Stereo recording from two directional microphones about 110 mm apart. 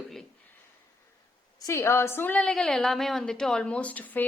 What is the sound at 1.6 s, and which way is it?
A woman's voice, 25° left (ahead or behind).